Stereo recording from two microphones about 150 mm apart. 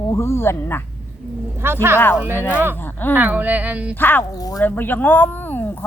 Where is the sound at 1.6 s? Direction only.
15° right (ahead or behind).